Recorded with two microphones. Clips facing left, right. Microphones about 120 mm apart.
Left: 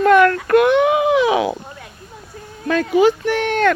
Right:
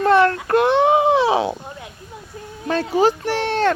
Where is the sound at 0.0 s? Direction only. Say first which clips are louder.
Left 3 dB; 30° right (ahead or behind).